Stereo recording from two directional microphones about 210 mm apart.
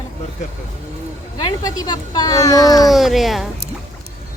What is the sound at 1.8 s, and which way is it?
Speech, 20° left (ahead or behind).